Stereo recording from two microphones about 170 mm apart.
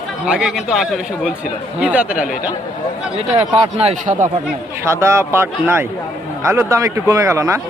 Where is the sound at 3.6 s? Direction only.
35° right (ahead or behind).